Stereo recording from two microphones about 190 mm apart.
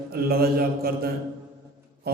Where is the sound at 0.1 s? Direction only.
55° right (ahead or behind).